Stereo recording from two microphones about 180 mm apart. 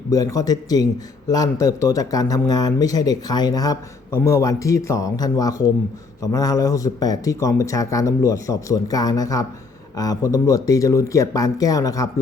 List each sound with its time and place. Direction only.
0.1 s speech: 20° left (ahead or behind)